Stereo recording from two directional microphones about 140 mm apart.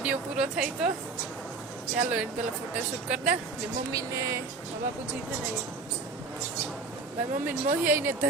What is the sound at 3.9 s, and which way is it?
Speech, 25° right (ahead or behind).